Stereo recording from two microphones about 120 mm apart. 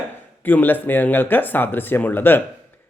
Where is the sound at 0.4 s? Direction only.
15° left (ahead or behind).